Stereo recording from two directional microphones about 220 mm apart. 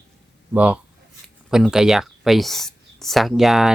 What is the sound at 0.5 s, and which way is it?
Speech, 5° right (ahead or behind).